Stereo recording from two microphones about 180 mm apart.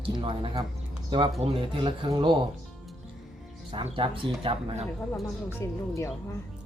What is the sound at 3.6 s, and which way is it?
Speech, 30° right (ahead or behind).